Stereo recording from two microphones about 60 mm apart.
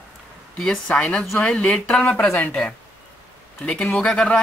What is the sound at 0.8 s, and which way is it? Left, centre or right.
Speech, left.